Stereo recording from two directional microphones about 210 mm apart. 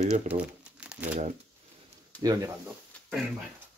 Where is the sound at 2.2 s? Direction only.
15° right (ahead or behind).